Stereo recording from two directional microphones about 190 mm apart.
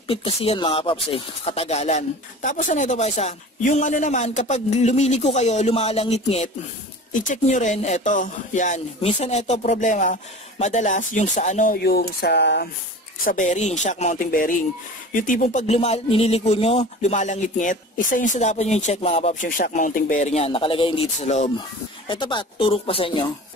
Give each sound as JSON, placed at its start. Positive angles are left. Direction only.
{"t": 0.1, "sound": "speech", "side_deg": 30}
{"t": 13.2, "sound": "speech", "side_deg": 45}
{"t": 22.0, "sound": "speech", "side_deg": 25}